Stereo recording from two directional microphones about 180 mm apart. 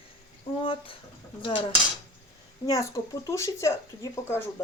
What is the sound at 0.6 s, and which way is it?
Speech, 30° left (ahead or behind).